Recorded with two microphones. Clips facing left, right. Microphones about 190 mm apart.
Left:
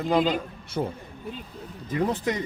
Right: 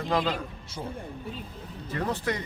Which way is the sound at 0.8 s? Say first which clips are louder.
Left 8 dB; 55° left (ahead or behind).